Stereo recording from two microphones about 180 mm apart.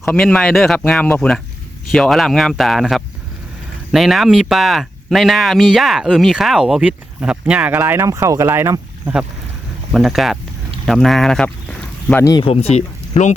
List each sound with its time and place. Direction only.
0.0 s speech: 5° left (ahead or behind); by 9.1 s 15° right (ahead or behind)
9.9 s speech: centre (ahead or behind); by 13.3 s 40° left (ahead or behind)